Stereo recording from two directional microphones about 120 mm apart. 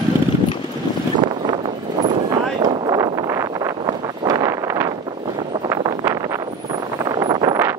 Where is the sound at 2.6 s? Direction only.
35° right (ahead or behind).